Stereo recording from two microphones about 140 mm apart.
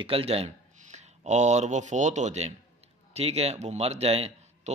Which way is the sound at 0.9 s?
55° right (ahead or behind).